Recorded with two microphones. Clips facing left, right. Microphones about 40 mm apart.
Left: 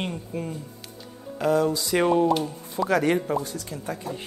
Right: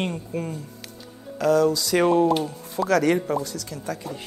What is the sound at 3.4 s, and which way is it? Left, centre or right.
Speech, left.